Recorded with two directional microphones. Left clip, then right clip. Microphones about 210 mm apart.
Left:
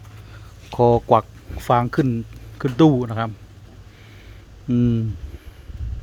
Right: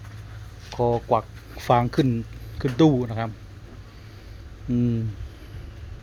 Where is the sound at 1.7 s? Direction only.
15° left (ahead or behind).